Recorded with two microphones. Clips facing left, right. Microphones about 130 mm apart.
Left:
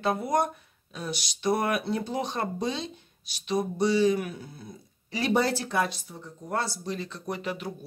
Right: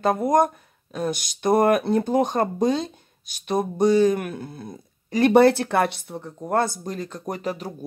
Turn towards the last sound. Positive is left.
turn(degrees=-40)  # may be behind; listen again after turning